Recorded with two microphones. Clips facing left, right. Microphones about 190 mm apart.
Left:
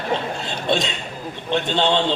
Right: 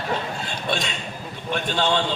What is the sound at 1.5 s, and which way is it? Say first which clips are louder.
Speech: left 3 dB; 20° left (ahead or behind).